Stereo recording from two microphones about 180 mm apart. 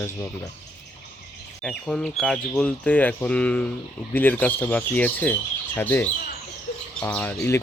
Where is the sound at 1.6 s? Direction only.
5° left (ahead or behind).